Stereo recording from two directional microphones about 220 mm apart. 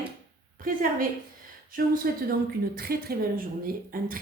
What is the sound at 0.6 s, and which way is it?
Speech, 40° right (ahead or behind).